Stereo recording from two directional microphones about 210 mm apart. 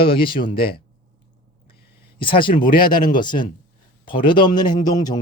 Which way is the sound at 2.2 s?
25° left (ahead or behind).